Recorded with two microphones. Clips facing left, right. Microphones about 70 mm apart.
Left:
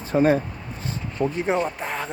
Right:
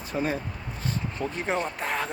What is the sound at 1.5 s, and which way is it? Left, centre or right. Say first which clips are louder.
Speech: left 4 dB; centre.